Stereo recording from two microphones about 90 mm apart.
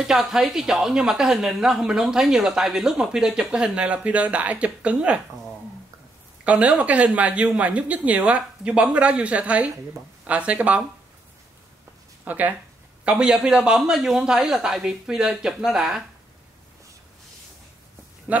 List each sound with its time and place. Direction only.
0.0 s speech: 5° right (ahead or behind)
6.4 s speech: 15° right (ahead or behind)
12.3 s speech: 20° right (ahead or behind)
18.3 s speech: 15° right (ahead or behind)